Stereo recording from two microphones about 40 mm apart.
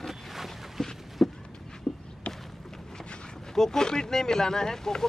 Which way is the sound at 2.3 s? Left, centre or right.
Left.